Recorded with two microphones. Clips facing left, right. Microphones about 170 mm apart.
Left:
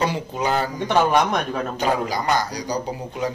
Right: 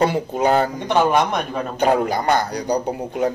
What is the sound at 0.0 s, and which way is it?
Speech, 50° right (ahead or behind).